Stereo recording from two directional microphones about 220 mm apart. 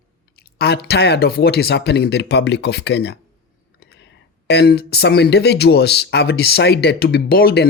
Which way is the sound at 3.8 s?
50° left (ahead or behind).